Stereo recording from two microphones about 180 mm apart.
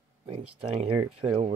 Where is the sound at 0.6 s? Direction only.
35° right (ahead or behind).